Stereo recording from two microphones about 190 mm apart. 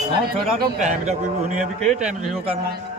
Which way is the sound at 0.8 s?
40° right (ahead or behind).